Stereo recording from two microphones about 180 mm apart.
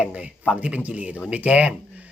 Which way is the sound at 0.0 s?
5° right (ahead or behind).